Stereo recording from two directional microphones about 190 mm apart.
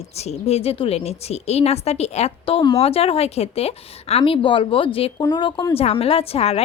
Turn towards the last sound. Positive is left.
turn(degrees=30)  # may be behind; listen again after turning